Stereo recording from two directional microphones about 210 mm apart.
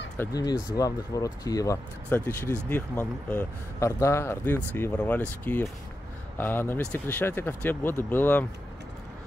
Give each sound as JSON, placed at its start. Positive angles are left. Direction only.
{"t": 0.2, "sound": "speech", "side_deg": 15}